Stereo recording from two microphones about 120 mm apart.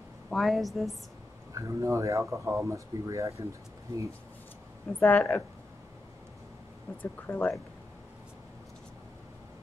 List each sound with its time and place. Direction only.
0.3 s a woman's voice: centre (ahead or behind)
1.5 s speech: 25° right (ahead or behind)
5.0 s speech: 10° left (ahead or behind)
7.0 s speech: 15° left (ahead or behind)